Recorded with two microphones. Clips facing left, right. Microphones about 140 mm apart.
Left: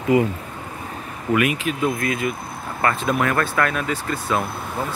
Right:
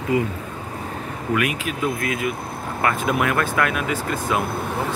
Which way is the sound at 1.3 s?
Centre (ahead or behind).